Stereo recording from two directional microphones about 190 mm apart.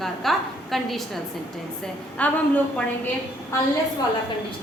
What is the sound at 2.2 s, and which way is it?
Speech, 5° left (ahead or behind).